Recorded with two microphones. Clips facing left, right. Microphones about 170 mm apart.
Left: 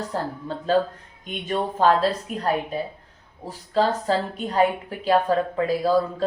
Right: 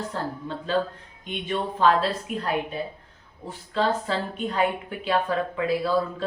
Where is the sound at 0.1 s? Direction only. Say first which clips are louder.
Left 2 dB; 40° left (ahead or behind).